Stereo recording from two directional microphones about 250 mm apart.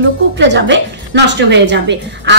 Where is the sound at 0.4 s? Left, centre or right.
Right.